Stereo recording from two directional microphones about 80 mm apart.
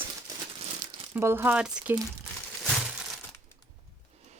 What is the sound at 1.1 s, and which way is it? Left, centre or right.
Speech, right.